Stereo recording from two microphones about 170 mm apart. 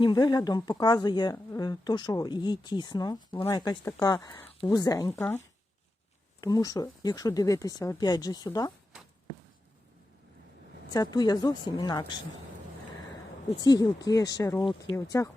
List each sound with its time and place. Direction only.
0.0 s speech: 25° left (ahead or behind)
6.4 s speech: 20° left (ahead or behind)
10.9 s speech: 25° left (ahead or behind)
13.6 s speech: 20° left (ahead or behind)
14.9 s speech: 20° left (ahead or behind)